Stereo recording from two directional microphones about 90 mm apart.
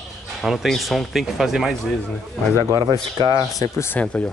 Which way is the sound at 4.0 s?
15° left (ahead or behind).